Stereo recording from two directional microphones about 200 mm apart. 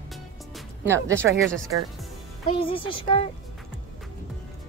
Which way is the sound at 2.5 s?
25° left (ahead or behind).